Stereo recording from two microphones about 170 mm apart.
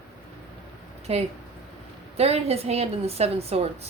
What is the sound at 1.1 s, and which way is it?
A woman's voice, 40° right (ahead or behind).